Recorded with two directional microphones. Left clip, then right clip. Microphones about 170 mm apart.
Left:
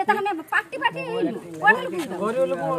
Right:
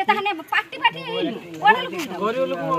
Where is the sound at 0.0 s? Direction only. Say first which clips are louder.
Right 2 dB; 5° right (ahead or behind).